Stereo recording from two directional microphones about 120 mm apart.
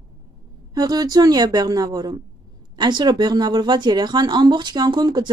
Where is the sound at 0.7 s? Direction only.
35° right (ahead or behind).